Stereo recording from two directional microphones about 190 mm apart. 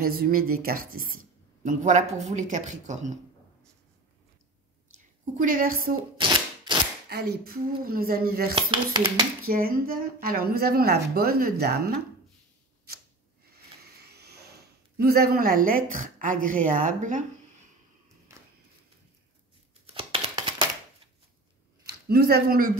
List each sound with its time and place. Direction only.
0.0 s speech: 50° right (ahead or behind)
4.9 s a woman's voice: 40° right (ahead or behind)
6.1 s typewriter: 25° right (ahead or behind)
7.1 s a woman's voice: 55° right (ahead or behind)
8.5 s speech: 25° right (ahead or behind)
9.5 s a woman's voice: 50° right (ahead or behind)
14.0 s speech: 60° right (ahead or behind); by 17.2 s 40° right (ahead or behind)
19.9 s a sound: 30° right (ahead or behind)
22.0 s a woman's voice: 55° right (ahead or behind)